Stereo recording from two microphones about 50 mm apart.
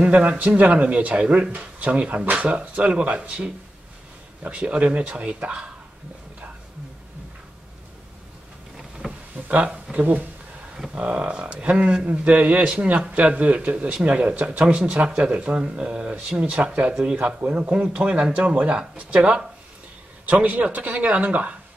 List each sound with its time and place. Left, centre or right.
0.0 s a man's voice: right
9.0 s a sound: centre
9.9 s a man's voice: right